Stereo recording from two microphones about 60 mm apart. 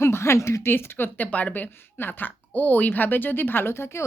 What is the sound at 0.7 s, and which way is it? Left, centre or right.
A woman's voice, left.